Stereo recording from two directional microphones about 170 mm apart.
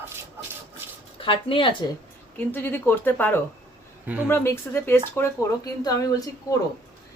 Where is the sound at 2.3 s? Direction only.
10° left (ahead or behind).